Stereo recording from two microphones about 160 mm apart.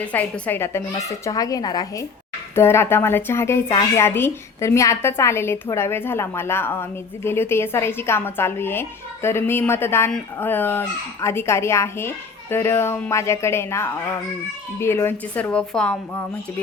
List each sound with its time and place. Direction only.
0.0 s a woman's voice: 10° left (ahead or behind)